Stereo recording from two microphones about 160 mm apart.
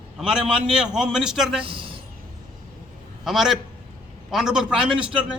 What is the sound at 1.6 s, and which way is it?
Speech, 35° right (ahead or behind).